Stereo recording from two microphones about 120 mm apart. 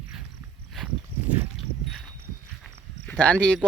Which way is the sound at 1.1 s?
50° right (ahead or behind).